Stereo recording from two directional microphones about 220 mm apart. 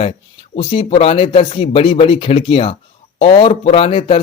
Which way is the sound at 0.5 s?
25° left (ahead or behind).